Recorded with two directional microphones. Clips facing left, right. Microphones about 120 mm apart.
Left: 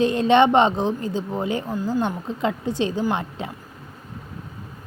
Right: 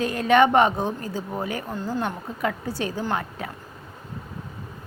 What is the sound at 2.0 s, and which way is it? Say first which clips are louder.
Speech: left 3 dB; 20° left (ahead or behind).